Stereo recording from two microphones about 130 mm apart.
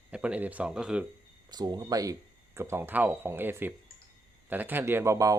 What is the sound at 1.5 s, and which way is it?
Speech, 30° right (ahead or behind).